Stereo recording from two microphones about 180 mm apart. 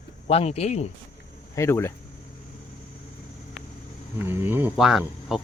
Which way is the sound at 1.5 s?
15° left (ahead or behind).